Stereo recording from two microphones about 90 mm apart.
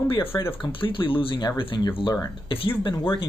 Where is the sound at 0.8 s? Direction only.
70° left (ahead or behind).